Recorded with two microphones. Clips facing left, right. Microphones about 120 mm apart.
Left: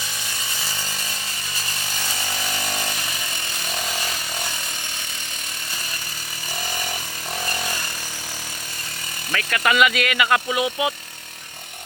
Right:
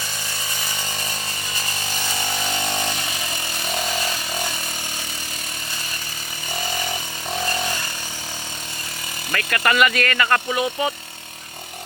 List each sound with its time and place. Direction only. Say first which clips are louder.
2.4 s chainsaw: right 3 dB; 25° right (ahead or behind)
9.3 s speech: even; centre (ahead or behind)